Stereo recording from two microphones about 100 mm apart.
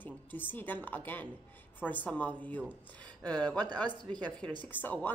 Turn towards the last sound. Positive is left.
turn(degrees=15)  # may be behind; listen again after turning